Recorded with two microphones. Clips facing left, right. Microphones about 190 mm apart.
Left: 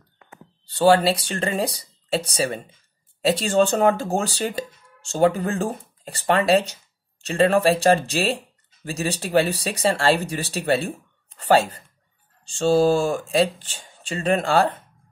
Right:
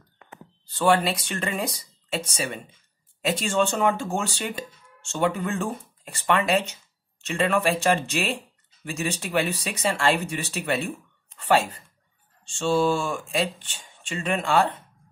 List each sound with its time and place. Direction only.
0.7 s speech: 30° left (ahead or behind)